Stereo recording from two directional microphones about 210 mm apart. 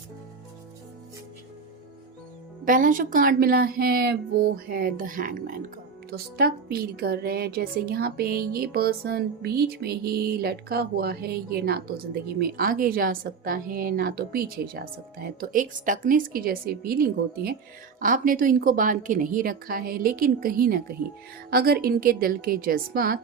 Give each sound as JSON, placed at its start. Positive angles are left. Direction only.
{"t": 2.6, "sound": "a woman's voice", "side_deg": -40}